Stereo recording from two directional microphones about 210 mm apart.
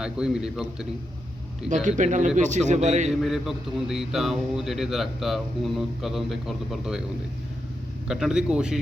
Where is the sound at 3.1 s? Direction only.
Centre (ahead or behind).